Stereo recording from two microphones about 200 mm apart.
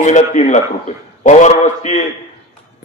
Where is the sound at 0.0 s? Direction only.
35° left (ahead or behind).